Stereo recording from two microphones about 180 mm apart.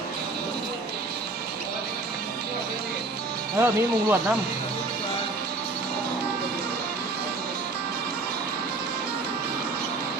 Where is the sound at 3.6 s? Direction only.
15° right (ahead or behind).